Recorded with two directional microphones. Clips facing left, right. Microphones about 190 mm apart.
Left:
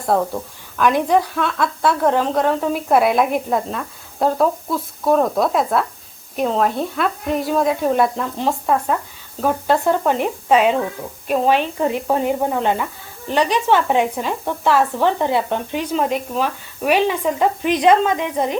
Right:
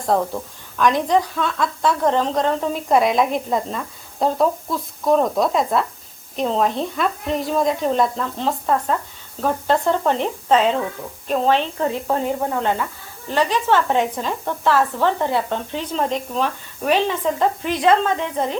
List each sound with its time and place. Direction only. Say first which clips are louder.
0.8 s speech: left 1 dB; 5° left (ahead or behind)